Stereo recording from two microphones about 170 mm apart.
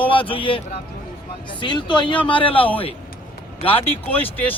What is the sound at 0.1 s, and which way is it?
Speech, 30° left (ahead or behind).